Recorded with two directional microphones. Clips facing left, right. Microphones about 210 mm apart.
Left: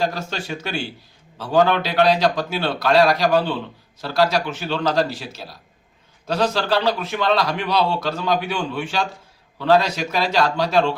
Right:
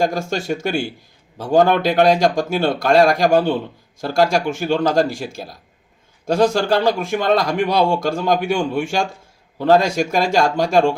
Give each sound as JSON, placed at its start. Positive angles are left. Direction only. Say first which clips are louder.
{"t": 0.0, "sound": "a man's voice", "louder": "right 5 dB", "side_deg": -45}